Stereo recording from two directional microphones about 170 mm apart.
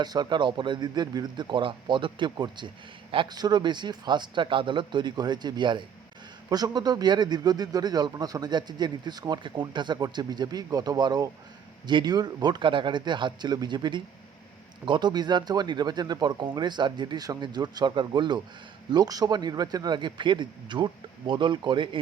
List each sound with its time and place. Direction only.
0.0 s speech: 25° right (ahead or behind)